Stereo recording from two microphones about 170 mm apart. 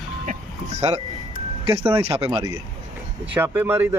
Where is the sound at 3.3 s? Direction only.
15° right (ahead or behind).